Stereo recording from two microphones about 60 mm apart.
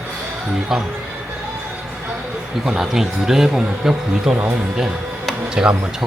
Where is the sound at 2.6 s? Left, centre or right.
Centre.